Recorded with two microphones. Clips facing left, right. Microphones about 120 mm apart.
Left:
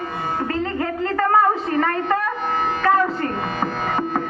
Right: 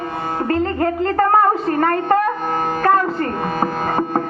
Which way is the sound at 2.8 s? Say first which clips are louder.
Right 2 dB; 45° right (ahead or behind).